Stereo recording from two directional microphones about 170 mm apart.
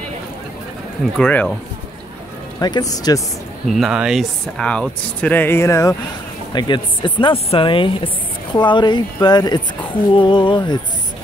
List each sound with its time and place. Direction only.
1.1 s speech: 5° left (ahead or behind)
2.6 s a woman's voice: 20° left (ahead or behind)
3.6 s speech: centre (ahead or behind); by 5.9 s 20° left (ahead or behind)
6.5 s a woman's voice: 30° left (ahead or behind)